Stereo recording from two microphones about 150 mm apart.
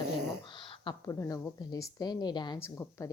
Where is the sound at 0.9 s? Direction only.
25° left (ahead or behind).